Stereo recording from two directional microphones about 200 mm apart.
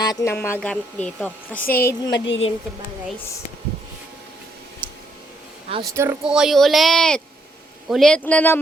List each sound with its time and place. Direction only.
0.0 s speech: 20° left (ahead or behind)
1.5 s speech: 45° left (ahead or behind); by 2.4 s 65° left (ahead or behind)
4.8 s a sound: 25° right (ahead or behind)
5.9 s speech: 15° right (ahead or behind); by 8.6 s 10° left (ahead or behind)